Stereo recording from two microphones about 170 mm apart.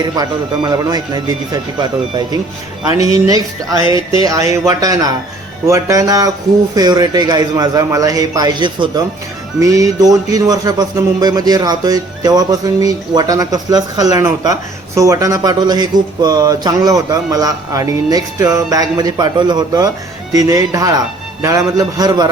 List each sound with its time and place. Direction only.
0.0 s speech: 25° right (ahead or behind)